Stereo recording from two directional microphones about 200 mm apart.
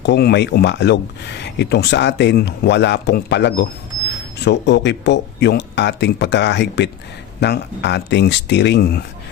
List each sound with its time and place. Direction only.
0.0 s speech: 55° left (ahead or behind)